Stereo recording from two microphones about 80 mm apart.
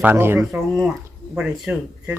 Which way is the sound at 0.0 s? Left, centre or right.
Right.